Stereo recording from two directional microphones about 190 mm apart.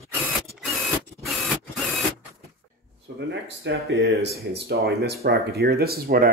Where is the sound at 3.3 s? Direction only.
65° right (ahead or behind).